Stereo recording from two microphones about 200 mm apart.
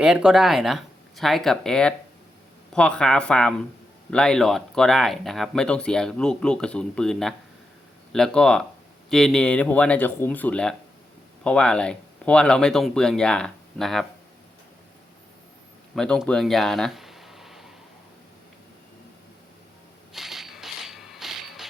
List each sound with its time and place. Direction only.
0.0 s speech: 5° right (ahead or behind)
16.0 s speech: 5° left (ahead or behind)
20.1 s mechanisms: centre (ahead or behind)